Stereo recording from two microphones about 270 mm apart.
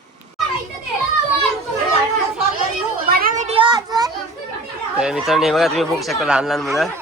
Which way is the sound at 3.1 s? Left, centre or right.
Right.